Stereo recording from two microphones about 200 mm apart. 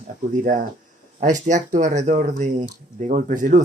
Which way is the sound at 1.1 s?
40° right (ahead or behind).